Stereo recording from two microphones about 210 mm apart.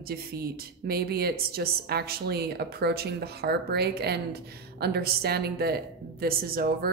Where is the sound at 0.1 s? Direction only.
45° right (ahead or behind).